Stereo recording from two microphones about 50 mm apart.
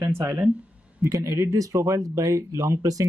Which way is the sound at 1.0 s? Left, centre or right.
Right.